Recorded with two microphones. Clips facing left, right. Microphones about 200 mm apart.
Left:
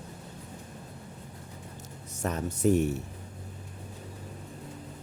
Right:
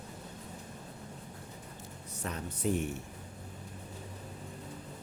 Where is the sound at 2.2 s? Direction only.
45° left (ahead or behind).